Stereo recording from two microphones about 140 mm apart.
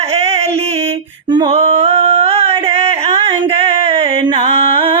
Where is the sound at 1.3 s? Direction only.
35° right (ahead or behind).